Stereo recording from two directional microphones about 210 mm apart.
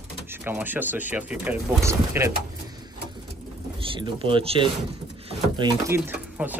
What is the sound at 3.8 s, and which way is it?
Speech, 25° right (ahead or behind).